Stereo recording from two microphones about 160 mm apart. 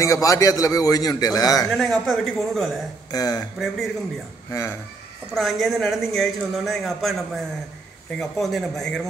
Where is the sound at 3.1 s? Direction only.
25° left (ahead or behind).